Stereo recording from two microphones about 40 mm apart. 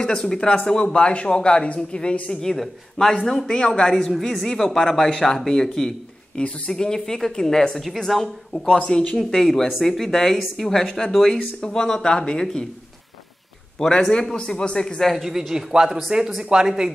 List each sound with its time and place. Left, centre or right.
0.0 s speech: centre
3.9 s a woman's voice: centre
6.4 s speech: left
6.7 s speech: centre
8.1 s a woman's voice: centre
8.6 s speech: left
9.1 s speech: centre
13.7 s speech: centre
15.0 s a woman's voice: centre
15.2 s a man's voice: centre